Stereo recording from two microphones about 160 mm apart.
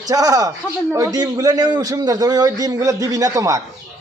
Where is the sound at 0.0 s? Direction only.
20° right (ahead or behind).